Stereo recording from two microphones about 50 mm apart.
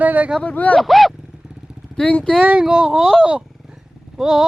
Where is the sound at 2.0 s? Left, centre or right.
Left.